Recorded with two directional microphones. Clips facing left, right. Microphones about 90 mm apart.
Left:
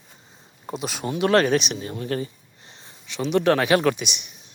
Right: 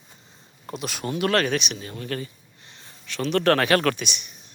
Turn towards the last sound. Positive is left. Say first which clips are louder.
# left 2 dB
turn(degrees=15)  # may be behind; listen again after turning